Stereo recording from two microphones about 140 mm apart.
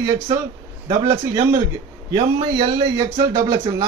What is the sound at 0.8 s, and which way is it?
Speech, 25° right (ahead or behind).